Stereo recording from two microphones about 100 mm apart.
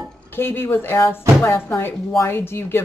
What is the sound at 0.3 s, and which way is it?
A woman's voice, 25° left (ahead or behind).